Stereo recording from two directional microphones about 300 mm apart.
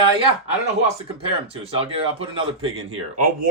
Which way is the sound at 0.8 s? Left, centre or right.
Centre.